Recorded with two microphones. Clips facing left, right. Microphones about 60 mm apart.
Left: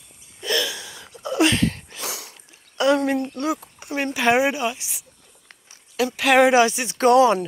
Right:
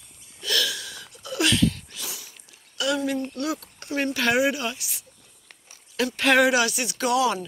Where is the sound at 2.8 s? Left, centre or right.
Left.